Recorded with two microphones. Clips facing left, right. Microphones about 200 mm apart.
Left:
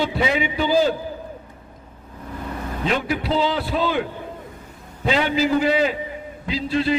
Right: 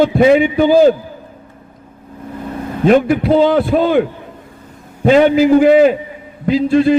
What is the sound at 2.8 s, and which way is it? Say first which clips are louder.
A man's voice: right 12 dB; 50° right (ahead or behind).